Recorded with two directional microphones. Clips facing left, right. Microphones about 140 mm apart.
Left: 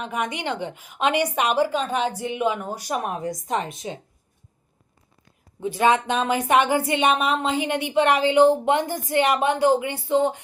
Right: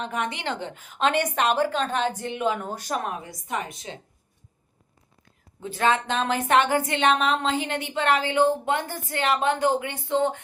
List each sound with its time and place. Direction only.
0.0 s a woman's voice: 10° left (ahead or behind)
3.2 s a woman's voice: 40° left (ahead or behind); by 4.0 s 20° left (ahead or behind)
5.5 s a woman's voice: 15° left (ahead or behind)